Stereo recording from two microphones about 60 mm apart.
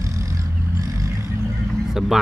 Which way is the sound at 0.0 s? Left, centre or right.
Right.